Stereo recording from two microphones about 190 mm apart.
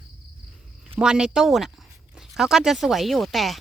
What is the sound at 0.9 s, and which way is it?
Speech, 5° right (ahead or behind).